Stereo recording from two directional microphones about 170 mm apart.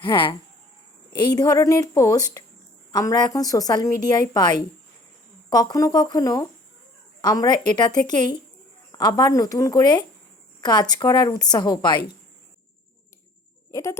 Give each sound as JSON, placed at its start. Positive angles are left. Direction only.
{"t": 0.0, "sound": "a woman's voice", "side_deg": 30}
{"t": 13.7, "sound": "speech", "side_deg": 15}